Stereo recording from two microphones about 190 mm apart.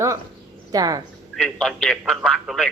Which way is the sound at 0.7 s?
20° right (ahead or behind).